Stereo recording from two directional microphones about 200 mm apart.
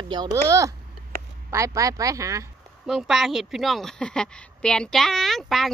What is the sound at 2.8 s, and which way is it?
Speech, centre (ahead or behind).